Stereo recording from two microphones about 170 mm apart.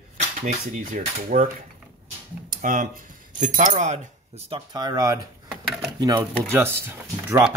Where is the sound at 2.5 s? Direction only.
55° right (ahead or behind).